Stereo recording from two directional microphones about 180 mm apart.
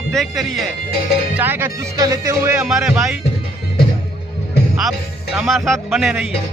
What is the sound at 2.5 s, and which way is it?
Speech, 5° right (ahead or behind).